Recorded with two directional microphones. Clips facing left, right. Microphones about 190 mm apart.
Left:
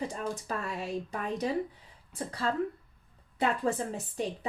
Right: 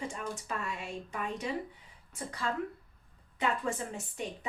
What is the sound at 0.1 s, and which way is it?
Speech, 40° left (ahead or behind).